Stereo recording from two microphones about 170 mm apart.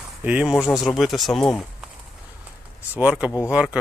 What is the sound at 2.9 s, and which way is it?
Speech, 5° right (ahead or behind).